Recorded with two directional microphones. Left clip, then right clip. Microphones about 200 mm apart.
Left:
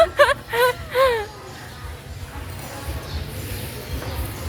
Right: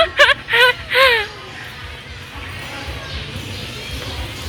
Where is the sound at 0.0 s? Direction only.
30° left (ahead or behind).